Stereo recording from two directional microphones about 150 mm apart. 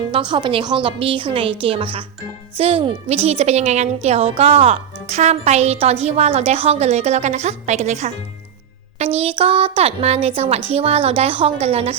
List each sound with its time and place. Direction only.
0.1 s a woman's voice: 35° right (ahead or behind)
9.1 s a woman's voice: 40° right (ahead or behind)